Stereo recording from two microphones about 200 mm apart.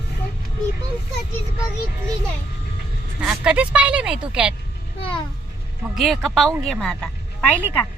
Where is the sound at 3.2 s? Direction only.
5° right (ahead or behind).